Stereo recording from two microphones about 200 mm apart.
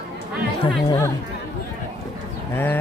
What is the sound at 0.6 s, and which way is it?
Speech, 20° left (ahead or behind).